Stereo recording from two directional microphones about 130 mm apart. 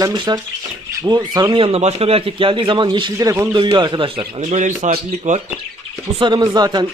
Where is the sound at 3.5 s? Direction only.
40° right (ahead or behind).